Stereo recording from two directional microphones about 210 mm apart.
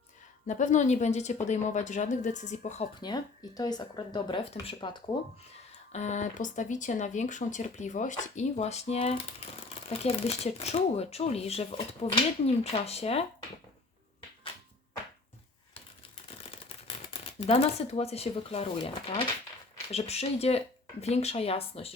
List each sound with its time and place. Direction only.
0.4 s speech: 35° left (ahead or behind)
3.0 s speech: 20° left (ahead or behind)
5.9 s speech: 35° left (ahead or behind)
16.6 s speech: 30° left (ahead or behind)